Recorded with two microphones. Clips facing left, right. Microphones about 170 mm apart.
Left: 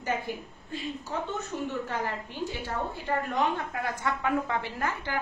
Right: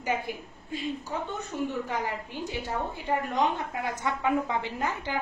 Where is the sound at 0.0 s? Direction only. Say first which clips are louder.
Right 1 dB; 15° right (ahead or behind).